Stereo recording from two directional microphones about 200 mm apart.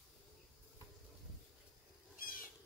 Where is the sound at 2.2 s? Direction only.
45° left (ahead or behind).